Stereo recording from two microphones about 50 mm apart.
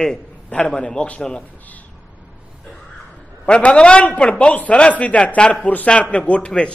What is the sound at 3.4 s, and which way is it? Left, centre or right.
A man's voice, left.